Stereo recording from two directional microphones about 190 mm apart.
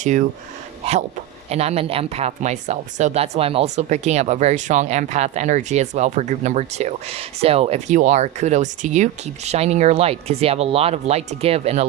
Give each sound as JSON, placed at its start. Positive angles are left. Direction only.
{"t": 0.0, "sound": "speech", "side_deg": -40}
{"t": 1.5, "sound": "speech", "side_deg": -35}